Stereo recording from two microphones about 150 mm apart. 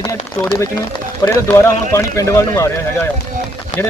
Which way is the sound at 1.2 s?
20° left (ahead or behind).